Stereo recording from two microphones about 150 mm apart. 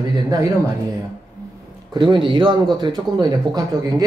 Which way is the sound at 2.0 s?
30° right (ahead or behind).